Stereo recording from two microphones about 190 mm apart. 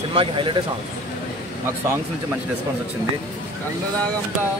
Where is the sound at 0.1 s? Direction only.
25° right (ahead or behind).